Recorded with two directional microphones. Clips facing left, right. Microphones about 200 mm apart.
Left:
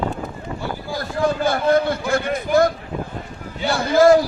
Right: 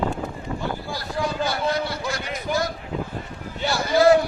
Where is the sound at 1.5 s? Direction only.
50° left (ahead or behind).